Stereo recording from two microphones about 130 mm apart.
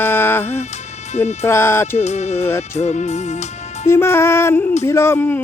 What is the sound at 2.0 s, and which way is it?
Music, 60° left (ahead or behind).